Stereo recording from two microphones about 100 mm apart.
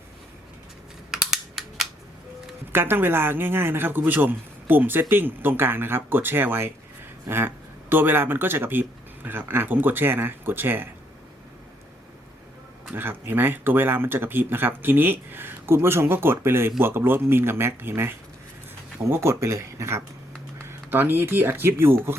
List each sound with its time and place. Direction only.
1.1 s cap gun: 5° right (ahead or behind)
2.7 s a man's voice: 20° right (ahead or behind)
12.9 s a man's voice: 20° right (ahead or behind)
19.1 s a man's voice: 25° right (ahead or behind)